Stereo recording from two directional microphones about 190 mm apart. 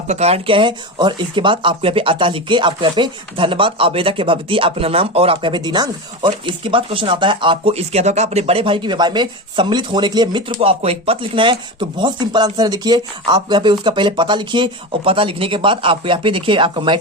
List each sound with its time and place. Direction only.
0.1 s speech: 35° right (ahead or behind)